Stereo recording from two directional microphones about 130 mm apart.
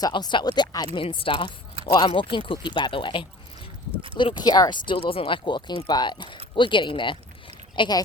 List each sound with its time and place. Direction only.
0.0 s speech: 35° left (ahead or behind)